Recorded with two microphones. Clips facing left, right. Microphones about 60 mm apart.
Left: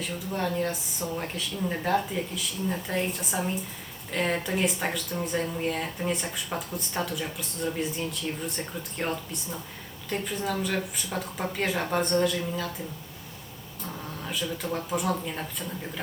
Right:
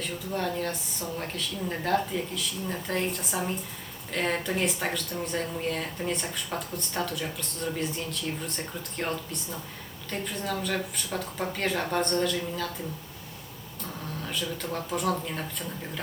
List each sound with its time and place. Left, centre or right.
0.0 s speech: centre
14.3 s speech: centre